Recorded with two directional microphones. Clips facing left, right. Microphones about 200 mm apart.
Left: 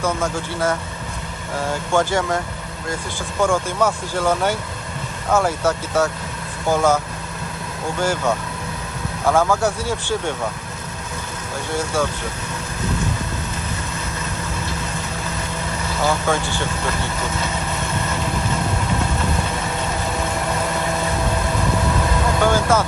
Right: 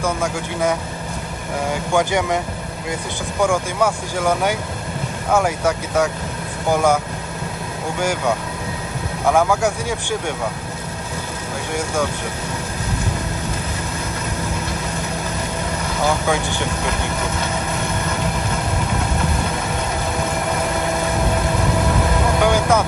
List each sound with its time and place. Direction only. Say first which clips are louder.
0.0 s speech: even; 15° right (ahead or behind)
3.4 s speech: even; 10° right (ahead or behind)
9.5 s speech: even; 15° right (ahead or behind)
16.0 s speech: right 1 dB; 15° right (ahead or behind)
22.4 s speech: right 1 dB; 15° right (ahead or behind)